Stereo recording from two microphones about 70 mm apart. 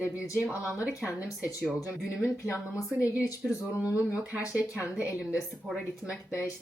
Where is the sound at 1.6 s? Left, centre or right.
Centre.